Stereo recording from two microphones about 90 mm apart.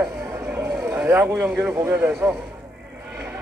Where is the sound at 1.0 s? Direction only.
20° right (ahead or behind).